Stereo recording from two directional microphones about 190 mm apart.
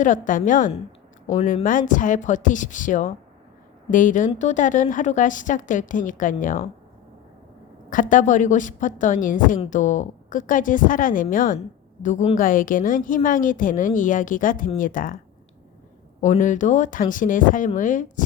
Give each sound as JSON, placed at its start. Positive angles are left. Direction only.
{"t": 0.0, "sound": "a woman's voice", "side_deg": 45}
{"t": 7.9, "sound": "a woman's voice", "side_deg": 45}
{"t": 16.2, "sound": "a woman's voice", "side_deg": 40}